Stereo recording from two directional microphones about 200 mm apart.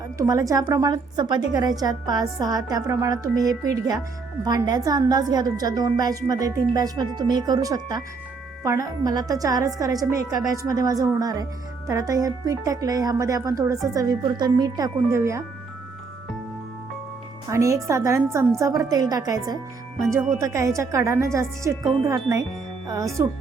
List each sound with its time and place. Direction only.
0.2 s a woman's voice: 15° right (ahead or behind)
17.5 s a woman's voice: 15° right (ahead or behind)